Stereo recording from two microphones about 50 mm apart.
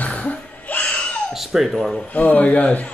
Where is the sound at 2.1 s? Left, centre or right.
Left.